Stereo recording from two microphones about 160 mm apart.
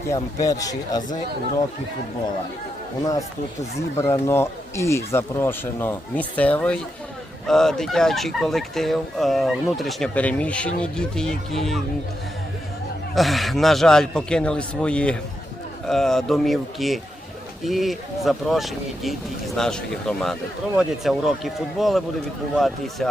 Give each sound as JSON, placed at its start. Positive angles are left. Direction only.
{"t": 0.1, "sound": "speech", "side_deg": 20}
{"t": 3.0, "sound": "speech", "side_deg": 20}
{"t": 13.1, "sound": "speech", "side_deg": 0}